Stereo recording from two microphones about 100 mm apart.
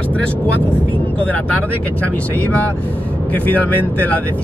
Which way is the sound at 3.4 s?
15° left (ahead or behind).